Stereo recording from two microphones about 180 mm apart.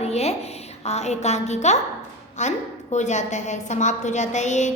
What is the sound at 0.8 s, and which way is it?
A woman's voice, 35° left (ahead or behind).